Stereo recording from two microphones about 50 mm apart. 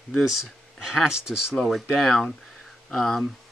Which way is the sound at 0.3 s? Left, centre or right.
Centre.